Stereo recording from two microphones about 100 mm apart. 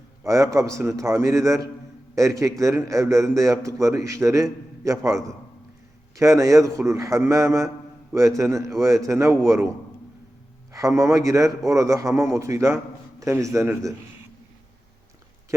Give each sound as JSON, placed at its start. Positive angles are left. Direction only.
{"t": 0.2, "sound": "a man's voice", "side_deg": -30}